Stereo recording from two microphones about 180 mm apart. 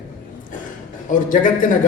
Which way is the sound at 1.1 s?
45° left (ahead or behind).